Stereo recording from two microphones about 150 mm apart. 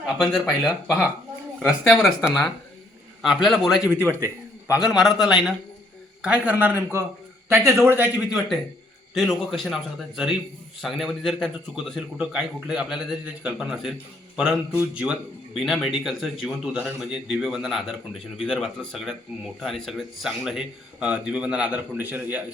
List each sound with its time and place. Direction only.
0.2 s speech: 5° left (ahead or behind); by 4.3 s 15° right (ahead or behind)
4.7 s a man's voice: centre (ahead or behind)